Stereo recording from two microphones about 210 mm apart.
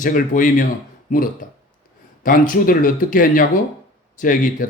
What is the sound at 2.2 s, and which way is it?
A man's voice, 40° left (ahead or behind).